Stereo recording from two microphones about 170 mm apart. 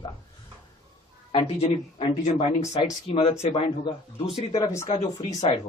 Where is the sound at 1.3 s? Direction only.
30° left (ahead or behind).